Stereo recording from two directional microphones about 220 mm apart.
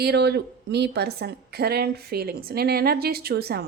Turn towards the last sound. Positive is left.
turn(degrees=-45)  # may be behind; listen again after turning